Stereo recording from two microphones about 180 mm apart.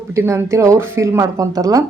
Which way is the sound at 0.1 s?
15° right (ahead or behind).